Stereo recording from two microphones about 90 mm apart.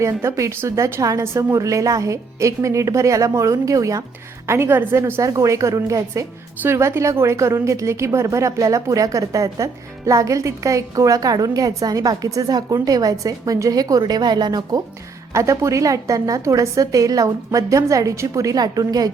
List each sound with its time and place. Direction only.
0.0 s a woman's voice: 30° right (ahead or behind)
4.4 s a woman's voice: 25° right (ahead or behind); by 14.8 s 50° right (ahead or behind)
15.3 s a woman's voice: 35° right (ahead or behind)